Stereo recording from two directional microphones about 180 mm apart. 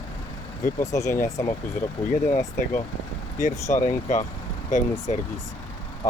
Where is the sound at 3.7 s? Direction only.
45° left (ahead or behind).